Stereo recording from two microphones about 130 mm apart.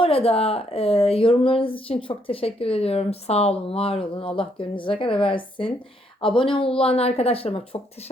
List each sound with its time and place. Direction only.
0.0 s speech: 50° left (ahead or behind)